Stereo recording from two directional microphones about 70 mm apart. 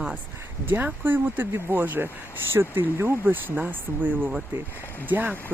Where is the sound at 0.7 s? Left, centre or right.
Right.